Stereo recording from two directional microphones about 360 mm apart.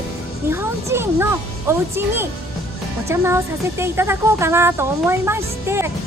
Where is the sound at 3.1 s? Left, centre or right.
Centre.